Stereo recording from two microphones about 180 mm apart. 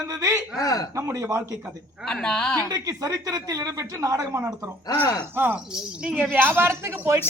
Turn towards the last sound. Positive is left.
turn(degrees=-10)  # may be behind; listen again after turning